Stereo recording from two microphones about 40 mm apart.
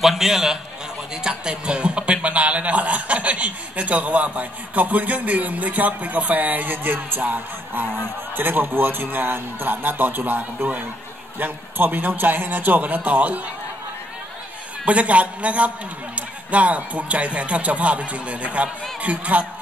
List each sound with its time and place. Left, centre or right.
0.0 s a man's voice: centre
1.1 s a man's voice: centre; by 13.4 s right
14.9 s a man's voice: right